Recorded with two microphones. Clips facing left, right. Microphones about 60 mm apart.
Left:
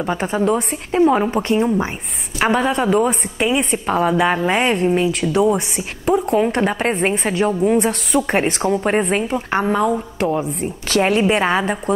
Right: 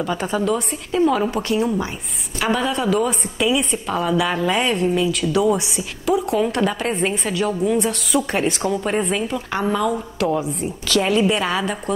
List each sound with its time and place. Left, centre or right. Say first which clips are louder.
0.0 s a woman's voice: left 3 dB; left
2.4 s a woman's voice: left 3 dB; left